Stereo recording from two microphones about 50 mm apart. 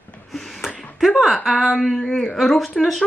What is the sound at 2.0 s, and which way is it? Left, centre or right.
Speech, centre.